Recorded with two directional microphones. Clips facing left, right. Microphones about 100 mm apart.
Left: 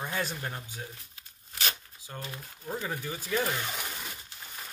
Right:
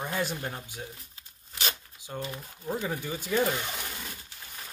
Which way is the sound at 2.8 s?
20° right (ahead or behind).